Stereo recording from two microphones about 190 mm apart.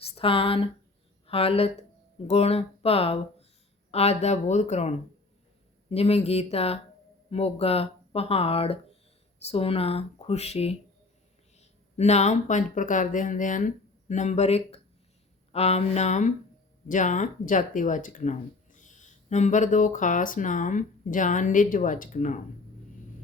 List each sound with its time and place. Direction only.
0.0 s speech: 30° left (ahead or behind)